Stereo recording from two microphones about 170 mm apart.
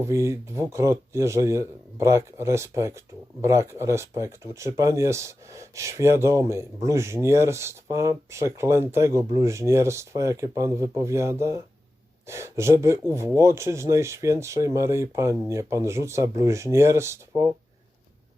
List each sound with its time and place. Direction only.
0.0 s speech: 15° right (ahead or behind)